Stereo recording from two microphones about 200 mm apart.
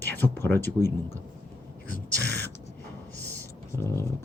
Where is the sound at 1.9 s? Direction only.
50° left (ahead or behind).